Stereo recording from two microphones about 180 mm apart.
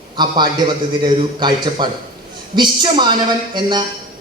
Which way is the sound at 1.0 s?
25° right (ahead or behind).